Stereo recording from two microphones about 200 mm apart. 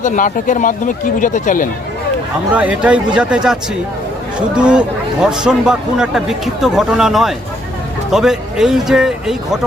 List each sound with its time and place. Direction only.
0.0 s speech: 40° left (ahead or behind)
2.5 s speech: 5° right (ahead or behind)